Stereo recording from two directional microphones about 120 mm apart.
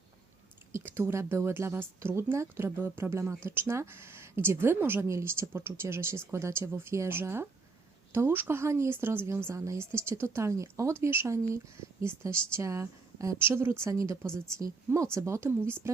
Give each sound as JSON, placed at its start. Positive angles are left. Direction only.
{"t": 0.7, "sound": "a woman's voice", "side_deg": -20}